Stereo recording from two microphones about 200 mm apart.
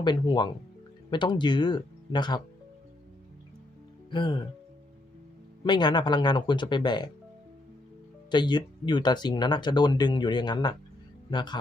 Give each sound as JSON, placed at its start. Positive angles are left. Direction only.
{"t": 0.0, "sound": "speech", "side_deg": 20}
{"t": 4.1, "sound": "speech", "side_deg": 25}
{"t": 5.6, "sound": "speech", "side_deg": 20}
{"t": 8.3, "sound": "speech", "side_deg": 20}